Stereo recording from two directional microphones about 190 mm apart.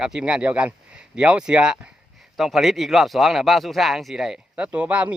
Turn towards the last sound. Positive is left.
turn(degrees=-5)  # may be behind; listen again after turning